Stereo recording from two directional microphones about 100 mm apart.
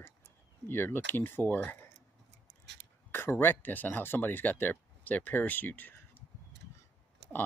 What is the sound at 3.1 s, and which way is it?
Speech, 25° left (ahead or behind).